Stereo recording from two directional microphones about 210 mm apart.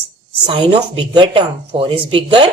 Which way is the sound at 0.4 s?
25° right (ahead or behind).